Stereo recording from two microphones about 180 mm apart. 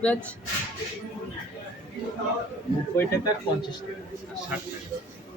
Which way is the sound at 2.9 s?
15° left (ahead or behind).